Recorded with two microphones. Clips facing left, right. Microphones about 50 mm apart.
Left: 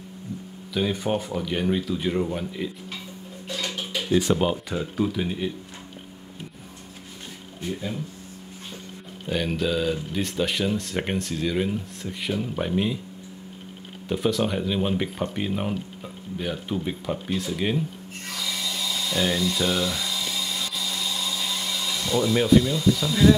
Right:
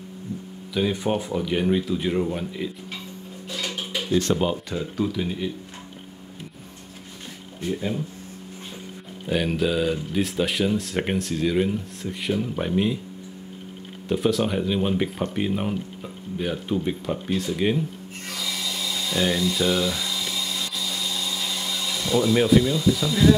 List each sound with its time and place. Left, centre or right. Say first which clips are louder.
0.7 s speech: right 1 dB; centre
3.4 s dishes: even; centre
4.1 s speech: left 1 dB; centre
7.6 s speech: right 4 dB; centre
9.2 s speech: right 2 dB; centre
14.0 s speech: right 2 dB; centre
18.3 s a sound: even; centre
21.8 s speech: right 2 dB; centre